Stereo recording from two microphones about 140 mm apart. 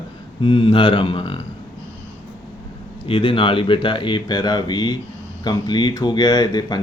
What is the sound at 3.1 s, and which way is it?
Speech, 35° left (ahead or behind).